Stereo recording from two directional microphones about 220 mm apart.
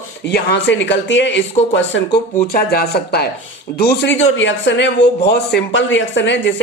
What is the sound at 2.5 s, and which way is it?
A woman's voice, 45° left (ahead or behind).